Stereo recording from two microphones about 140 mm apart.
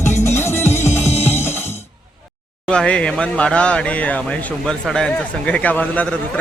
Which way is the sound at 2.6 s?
5° left (ahead or behind).